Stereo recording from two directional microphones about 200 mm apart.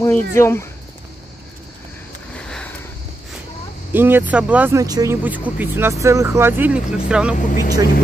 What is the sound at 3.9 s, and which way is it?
Speech, 10° right (ahead or behind).